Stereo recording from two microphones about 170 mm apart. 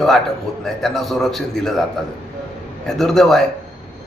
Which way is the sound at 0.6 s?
Centre (ahead or behind).